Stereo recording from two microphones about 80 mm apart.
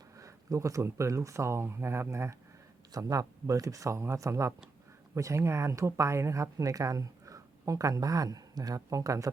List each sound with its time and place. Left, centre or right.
0.2 s speech: right
2.9 s speech: right